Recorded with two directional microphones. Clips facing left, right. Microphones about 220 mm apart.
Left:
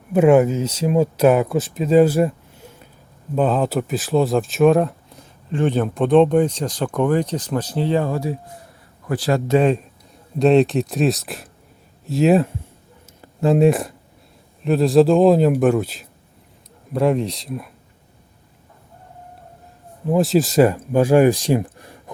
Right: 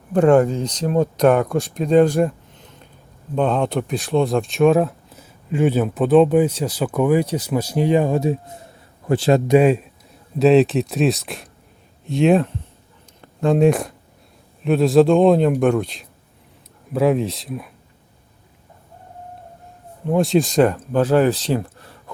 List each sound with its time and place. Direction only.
0.1 s a man's voice: 5° left (ahead or behind); by 9.6 s 25° right (ahead or behind)
9.6 s a man's voice: 10° right (ahead or behind)
20.1 s speech: centre (ahead or behind)